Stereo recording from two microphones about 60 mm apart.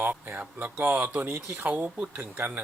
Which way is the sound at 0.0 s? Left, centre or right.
Right.